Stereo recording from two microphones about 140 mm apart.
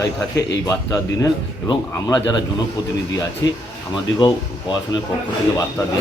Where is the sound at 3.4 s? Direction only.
25° left (ahead or behind).